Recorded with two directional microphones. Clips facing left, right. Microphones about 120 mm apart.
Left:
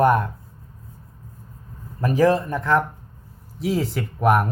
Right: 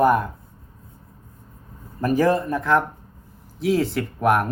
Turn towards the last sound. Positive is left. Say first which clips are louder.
# left 1 dB
turn(degrees=0)  # may be behind; listen again after turning